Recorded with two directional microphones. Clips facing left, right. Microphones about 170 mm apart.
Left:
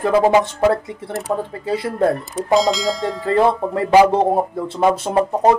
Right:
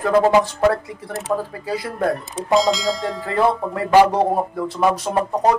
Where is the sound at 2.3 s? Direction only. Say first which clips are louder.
Left 1 dB; centre (ahead or behind).